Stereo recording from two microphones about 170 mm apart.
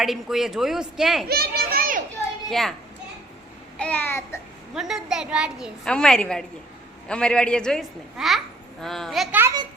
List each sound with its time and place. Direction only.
0.0 s a woman's voice: centre (ahead or behind)
1.3 s children playing: 65° right (ahead or behind)
2.5 s a woman's voice: centre (ahead or behind)
3.8 s babbling: 10° left (ahead or behind)
4.7 s a woman's voice: 5° right (ahead or behind)